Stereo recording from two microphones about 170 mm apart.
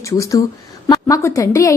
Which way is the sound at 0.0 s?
20° left (ahead or behind).